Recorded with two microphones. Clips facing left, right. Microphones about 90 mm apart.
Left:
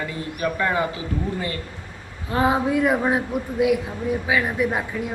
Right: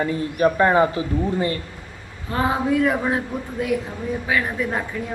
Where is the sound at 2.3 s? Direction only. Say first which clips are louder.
Even; 15° left (ahead or behind).